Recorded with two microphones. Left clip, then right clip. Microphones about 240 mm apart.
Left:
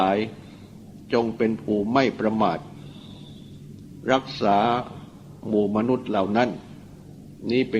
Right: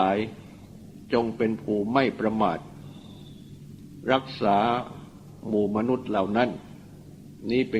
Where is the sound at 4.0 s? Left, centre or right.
Right.